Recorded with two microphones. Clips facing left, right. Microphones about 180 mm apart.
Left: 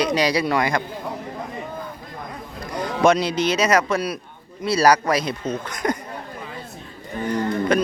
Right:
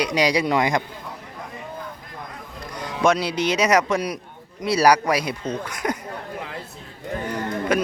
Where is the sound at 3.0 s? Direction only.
5° right (ahead or behind).